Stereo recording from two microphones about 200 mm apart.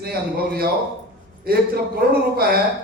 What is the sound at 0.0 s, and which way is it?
Speech, 50° right (ahead or behind).